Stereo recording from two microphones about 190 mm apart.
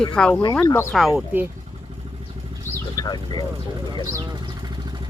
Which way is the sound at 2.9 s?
20° left (ahead or behind).